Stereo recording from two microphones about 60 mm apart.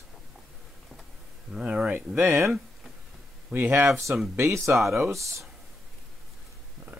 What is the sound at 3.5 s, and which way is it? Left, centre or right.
Speech, right.